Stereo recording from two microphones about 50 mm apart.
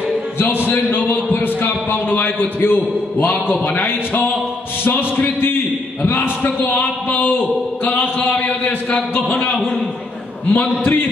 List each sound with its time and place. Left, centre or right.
0.4 s a man's voice: left
0.8 s a man's voice: left
10.5 s speech: left